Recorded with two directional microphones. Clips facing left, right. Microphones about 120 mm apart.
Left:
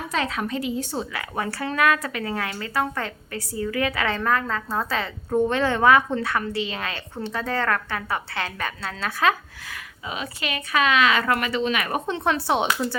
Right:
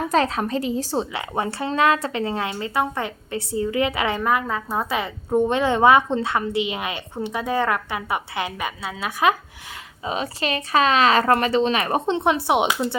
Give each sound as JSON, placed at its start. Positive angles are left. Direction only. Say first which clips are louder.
{"t": 0.1, "sound": "a woman's voice", "louder": "right 4 dB", "side_deg": -35}
{"t": 10.0, "sound": "speech", "louder": "right 6 dB", "side_deg": -35}